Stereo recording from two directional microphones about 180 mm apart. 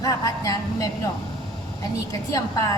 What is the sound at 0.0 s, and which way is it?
Speech, 20° left (ahead or behind).